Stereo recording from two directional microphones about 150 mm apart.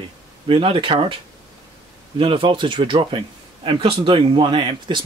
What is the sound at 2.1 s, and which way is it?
Speech, 35° right (ahead or behind).